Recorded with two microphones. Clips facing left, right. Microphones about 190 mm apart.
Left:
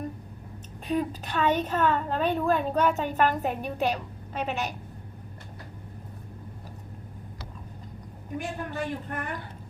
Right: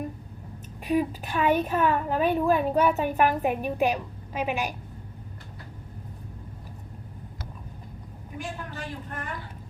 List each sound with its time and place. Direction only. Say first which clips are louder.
0.9 s a woman's voice: right 3 dB; 10° right (ahead or behind)
8.4 s a woman's voice: left 4 dB; 60° left (ahead or behind)